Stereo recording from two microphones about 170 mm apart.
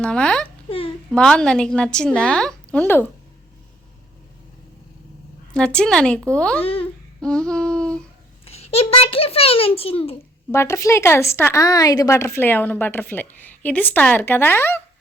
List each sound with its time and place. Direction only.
0.0 s a woman's voice: 5° left (ahead or behind)
5.5 s a woman's voice: 5° left (ahead or behind)
6.6 s a child's voice: 35° left (ahead or behind)
7.2 s a woman's voice: 5° left (ahead or behind)
8.4 s a child's voice: 35° left (ahead or behind)
10.5 s speech: 15° left (ahead or behind)